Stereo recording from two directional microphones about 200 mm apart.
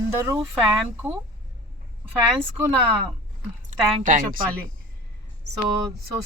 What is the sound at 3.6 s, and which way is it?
Speech, 40° right (ahead or behind).